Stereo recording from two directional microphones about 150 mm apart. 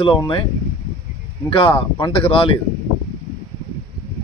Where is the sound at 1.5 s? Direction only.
35° left (ahead or behind).